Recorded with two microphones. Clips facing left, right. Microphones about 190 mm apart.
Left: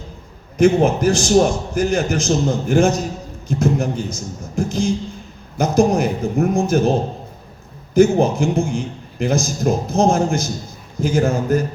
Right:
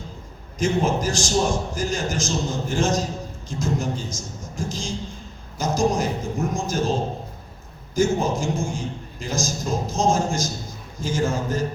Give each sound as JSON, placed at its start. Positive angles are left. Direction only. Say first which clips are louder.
{"t": 0.6, "sound": "a man's voice", "louder": "left 8 dB", "side_deg": 60}
{"t": 7.9, "sound": "a man's voice", "louder": "left 8 dB", "side_deg": 60}